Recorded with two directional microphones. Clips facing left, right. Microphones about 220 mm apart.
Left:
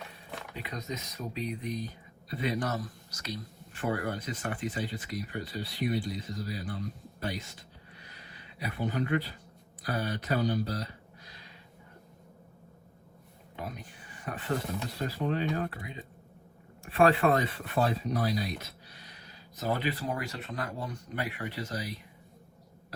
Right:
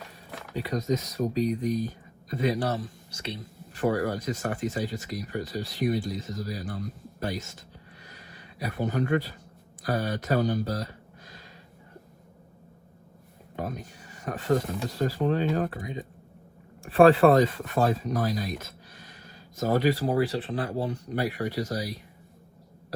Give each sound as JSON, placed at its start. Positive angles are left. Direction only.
{"t": 0.5, "sound": "speech", "side_deg": -40}
{"t": 3.8, "sound": "speech", "side_deg": -40}
{"t": 8.0, "sound": "a sound", "side_deg": -45}
{"t": 9.8, "sound": "speech", "side_deg": -45}
{"t": 13.6, "sound": "speech", "side_deg": -45}
{"t": 17.4, "sound": "speech", "side_deg": -45}